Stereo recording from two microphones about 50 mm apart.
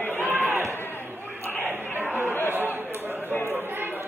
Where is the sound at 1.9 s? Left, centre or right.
Right.